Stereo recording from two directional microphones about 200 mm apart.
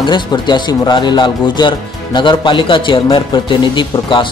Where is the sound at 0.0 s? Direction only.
20° left (ahead or behind).